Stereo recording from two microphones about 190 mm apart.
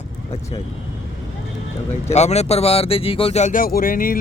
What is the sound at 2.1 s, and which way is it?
Speech, 35° left (ahead or behind).